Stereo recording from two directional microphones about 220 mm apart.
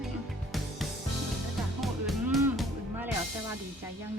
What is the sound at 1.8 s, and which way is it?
Music, 5° right (ahead or behind).